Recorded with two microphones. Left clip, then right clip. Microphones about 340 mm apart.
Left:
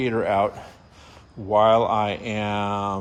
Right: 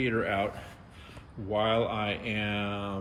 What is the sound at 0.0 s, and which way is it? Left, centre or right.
Speech, centre.